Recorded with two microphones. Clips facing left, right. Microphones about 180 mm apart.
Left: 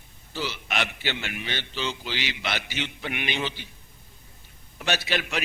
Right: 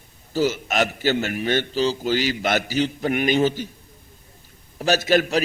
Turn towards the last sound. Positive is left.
turn(degrees=-40)  # may be behind; listen again after turning